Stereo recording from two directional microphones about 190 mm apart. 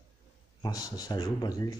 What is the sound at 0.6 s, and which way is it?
Speech, 20° left (ahead or behind).